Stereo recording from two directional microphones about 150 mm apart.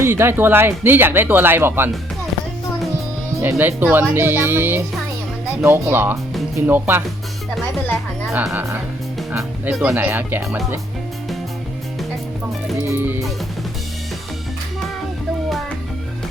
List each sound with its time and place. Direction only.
0.0 s speech: 15° right (ahead or behind)
3.4 s speech: 15° right (ahead or behind)
9.4 s speech: 5° right (ahead or behind)
12.8 s music: 15° right (ahead or behind)